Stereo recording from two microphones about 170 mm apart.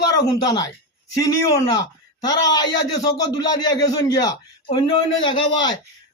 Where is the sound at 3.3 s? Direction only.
20° left (ahead or behind).